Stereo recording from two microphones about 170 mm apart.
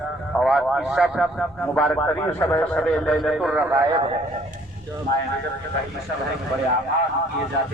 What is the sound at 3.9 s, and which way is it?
Speech, 35° right (ahead or behind).